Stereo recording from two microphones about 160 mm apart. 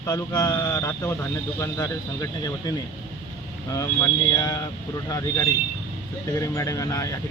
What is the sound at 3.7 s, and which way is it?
A man's voice, 20° left (ahead or behind).